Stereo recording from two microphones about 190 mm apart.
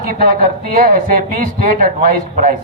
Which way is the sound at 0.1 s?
50° right (ahead or behind).